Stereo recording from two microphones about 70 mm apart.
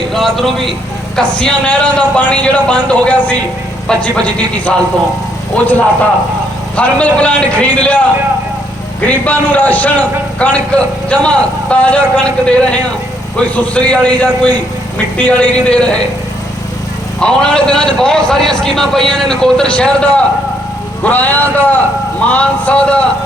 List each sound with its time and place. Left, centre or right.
0.1 s a man's voice: centre
9.0 s a man's voice: left
17.2 s a man's voice: centre